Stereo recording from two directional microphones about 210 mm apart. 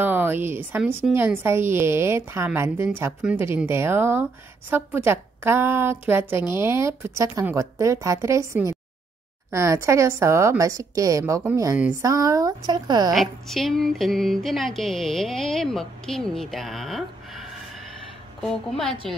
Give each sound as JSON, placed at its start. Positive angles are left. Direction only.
{"t": 0.0, "sound": "a woman's voice", "side_deg": -10}
{"t": 13.1, "sound": "speech", "side_deg": 0}
{"t": 18.4, "sound": "speech", "side_deg": 0}